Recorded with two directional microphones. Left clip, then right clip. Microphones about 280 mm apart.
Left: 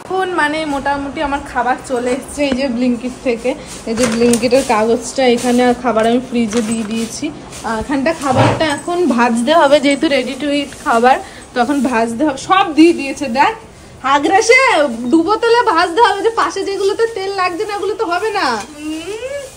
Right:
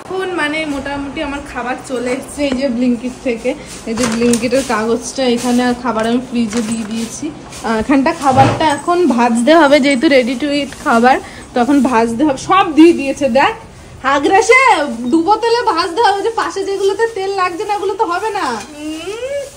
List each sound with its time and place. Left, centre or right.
0.1 s a woman's voice: centre
11.5 s a woman's voice: centre
11.8 s a woman's voice: right
12.3 s a woman's voice: centre